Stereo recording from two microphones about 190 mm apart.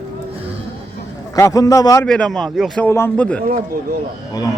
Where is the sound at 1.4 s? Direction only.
20° left (ahead or behind).